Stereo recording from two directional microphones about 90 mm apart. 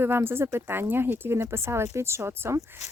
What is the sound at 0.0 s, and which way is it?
Speech, 25° right (ahead or behind).